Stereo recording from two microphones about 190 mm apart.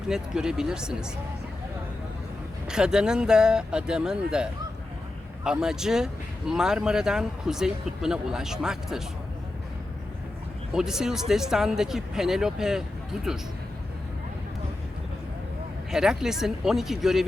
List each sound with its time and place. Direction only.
0.1 s speech: 5° right (ahead or behind)
2.6 s speech: 5° right (ahead or behind)
10.8 s speech: 5° right (ahead or behind)
15.9 s speech: 5° right (ahead or behind)